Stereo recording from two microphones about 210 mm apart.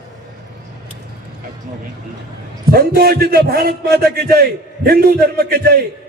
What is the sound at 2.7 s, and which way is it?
A man's voice, 45° right (ahead or behind).